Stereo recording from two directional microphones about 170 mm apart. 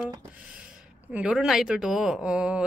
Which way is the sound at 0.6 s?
10° right (ahead or behind).